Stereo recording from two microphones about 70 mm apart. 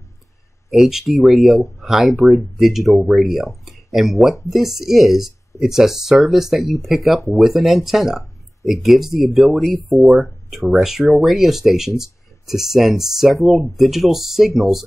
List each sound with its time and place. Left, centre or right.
0.7 s speech: centre
2.3 s speech: left
2.6 s speech: centre
3.6 s a sound: centre
4.5 s speech: centre